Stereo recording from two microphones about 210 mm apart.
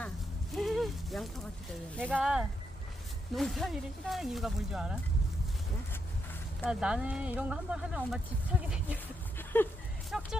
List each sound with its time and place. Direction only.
0.5 s horse: centre (ahead or behind)
2.0 s speech: 5° right (ahead or behind)
6.7 s speech: 5° right (ahead or behind)
9.4 s a sound: 10° left (ahead or behind)
10.1 s speech: centre (ahead or behind)